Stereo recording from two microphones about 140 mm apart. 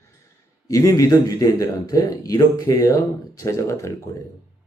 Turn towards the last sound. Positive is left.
turn(degrees=20)  # may be behind; listen again after turning